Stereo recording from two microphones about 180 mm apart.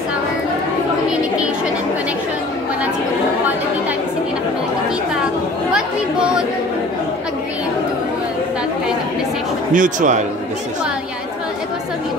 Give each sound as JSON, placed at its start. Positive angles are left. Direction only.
{"t": 5.7, "sound": "chatter", "side_deg": -5}
{"t": 9.8, "sound": "a man's voice", "side_deg": -45}